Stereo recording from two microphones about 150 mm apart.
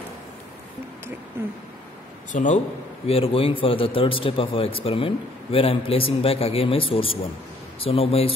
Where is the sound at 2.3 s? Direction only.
55° left (ahead or behind).